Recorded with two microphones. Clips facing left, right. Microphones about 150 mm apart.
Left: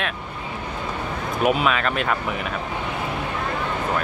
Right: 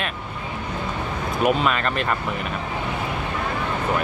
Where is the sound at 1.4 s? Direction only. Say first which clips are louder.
Even; centre (ahead or behind).